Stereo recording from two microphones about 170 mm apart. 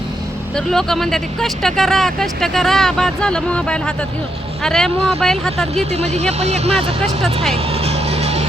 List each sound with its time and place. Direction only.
0.5 s speech: 5° left (ahead or behind)
5.9 s speech: 40° right (ahead or behind)
7.5 s music: 35° right (ahead or behind)